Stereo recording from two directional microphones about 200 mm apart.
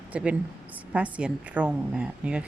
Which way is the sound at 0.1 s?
5° right (ahead or behind).